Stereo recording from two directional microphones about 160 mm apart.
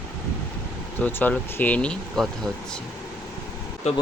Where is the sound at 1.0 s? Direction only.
10° left (ahead or behind).